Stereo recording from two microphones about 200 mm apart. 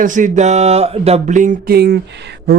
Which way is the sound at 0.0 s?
40° right (ahead or behind).